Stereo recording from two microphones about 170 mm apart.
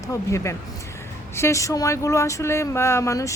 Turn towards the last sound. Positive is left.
turn(degrees=20)  # may be behind; listen again after turning